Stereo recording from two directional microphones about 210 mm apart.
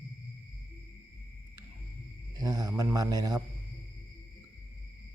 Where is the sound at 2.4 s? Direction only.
15° right (ahead or behind).